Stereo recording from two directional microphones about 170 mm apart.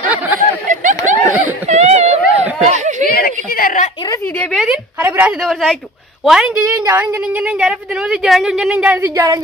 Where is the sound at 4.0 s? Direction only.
20° left (ahead or behind).